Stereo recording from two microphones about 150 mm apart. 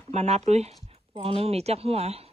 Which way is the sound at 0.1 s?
45° right (ahead or behind).